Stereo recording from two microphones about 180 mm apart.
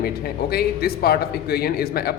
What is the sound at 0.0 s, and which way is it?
A man's voice, 60° left (ahead or behind).